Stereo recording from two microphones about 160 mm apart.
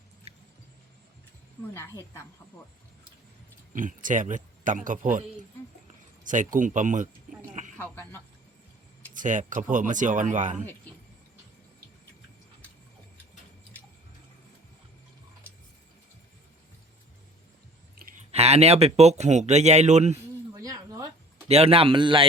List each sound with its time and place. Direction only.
1.7 s speech: 15° left (ahead or behind)
3.7 s speech: 55° right (ahead or behind)
6.2 s speech: 50° right (ahead or behind)
7.5 s a sound: 50° right (ahead or behind)
7.8 s speech: 15° left (ahead or behind)
9.1 s speech: 50° right (ahead or behind)
18.3 s speech: 40° right (ahead or behind)
20.5 s a sound: 20° right (ahead or behind)
21.4 s a man's voice: 40° right (ahead or behind)